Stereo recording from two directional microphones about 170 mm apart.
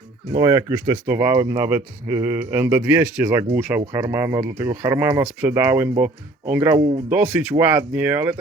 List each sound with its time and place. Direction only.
0.3 s speech: 20° right (ahead or behind)